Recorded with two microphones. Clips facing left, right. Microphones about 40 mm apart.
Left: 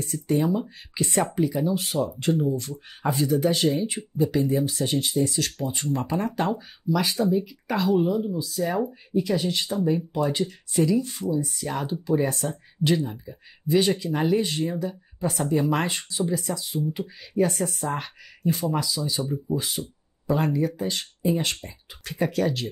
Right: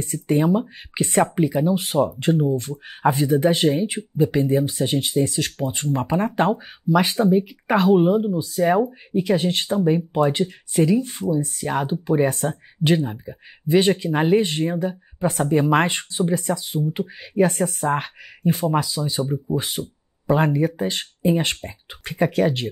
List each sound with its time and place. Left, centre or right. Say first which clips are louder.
0.0 s speech: right 3 dB; right
0.4 s speech: right 5 dB; right